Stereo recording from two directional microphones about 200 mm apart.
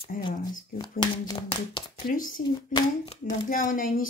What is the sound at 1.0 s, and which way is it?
Speech, 20° left (ahead or behind).